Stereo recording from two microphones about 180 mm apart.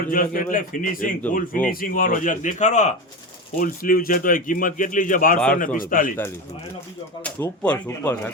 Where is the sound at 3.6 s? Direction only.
55° left (ahead or behind).